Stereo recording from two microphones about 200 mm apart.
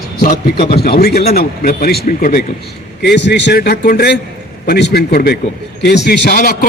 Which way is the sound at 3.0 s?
60° left (ahead or behind).